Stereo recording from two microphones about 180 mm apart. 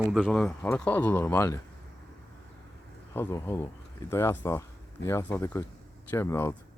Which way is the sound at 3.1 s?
15° left (ahead or behind).